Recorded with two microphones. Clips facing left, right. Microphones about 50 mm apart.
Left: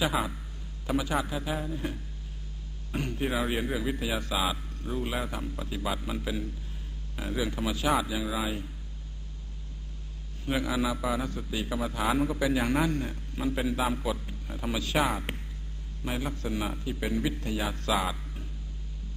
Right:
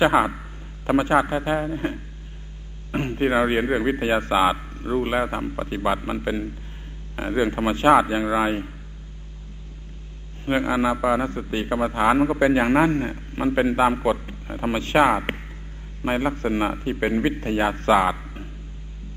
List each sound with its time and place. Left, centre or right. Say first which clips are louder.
0.0 s a man's voice: right 11 dB; right
10.4 s a man's voice: right 8 dB; right